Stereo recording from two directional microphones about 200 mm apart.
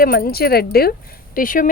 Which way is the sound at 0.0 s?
45° left (ahead or behind).